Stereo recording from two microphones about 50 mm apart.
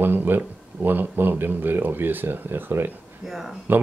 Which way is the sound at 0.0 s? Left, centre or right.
Right.